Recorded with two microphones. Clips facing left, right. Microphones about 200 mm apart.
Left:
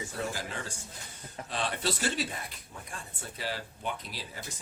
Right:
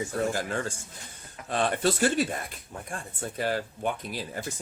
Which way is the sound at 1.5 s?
50° right (ahead or behind).